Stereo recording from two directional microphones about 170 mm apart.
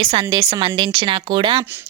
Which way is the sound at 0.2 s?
20° right (ahead or behind).